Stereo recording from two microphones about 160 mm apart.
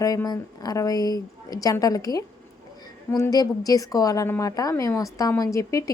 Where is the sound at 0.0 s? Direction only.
20° left (ahead or behind).